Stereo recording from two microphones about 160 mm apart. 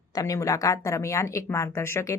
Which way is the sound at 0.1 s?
25° left (ahead or behind).